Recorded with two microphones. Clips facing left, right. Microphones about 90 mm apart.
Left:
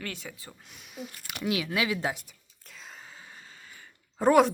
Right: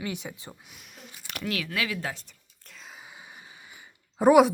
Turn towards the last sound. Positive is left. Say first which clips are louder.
# right 3 dB
turn(degrees=-10)  # may be behind; listen again after turning